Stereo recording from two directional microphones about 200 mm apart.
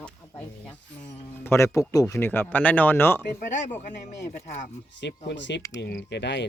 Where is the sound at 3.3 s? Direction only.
40° left (ahead or behind).